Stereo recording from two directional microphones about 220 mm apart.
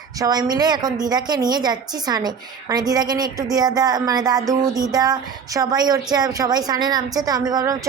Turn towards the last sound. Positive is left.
turn(degrees=-15)  # may be behind; listen again after turning